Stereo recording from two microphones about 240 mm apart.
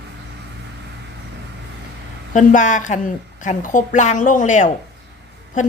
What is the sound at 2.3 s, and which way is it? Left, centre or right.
A woman's voice, left.